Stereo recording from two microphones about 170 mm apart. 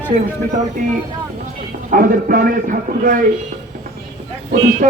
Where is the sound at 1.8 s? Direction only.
55° right (ahead or behind).